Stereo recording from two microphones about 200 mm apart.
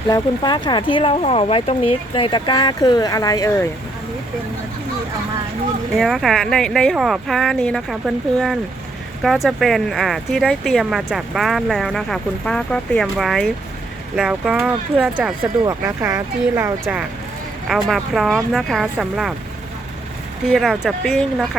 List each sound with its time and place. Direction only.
0.1 s speech: 20° left (ahead or behind)
6.0 s speech: centre (ahead or behind)
17.7 s speech: centre (ahead or behind)
20.5 s speech: centre (ahead or behind)